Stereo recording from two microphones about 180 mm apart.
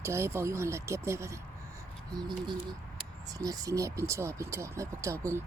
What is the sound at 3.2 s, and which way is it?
Speech, 20° right (ahead or behind).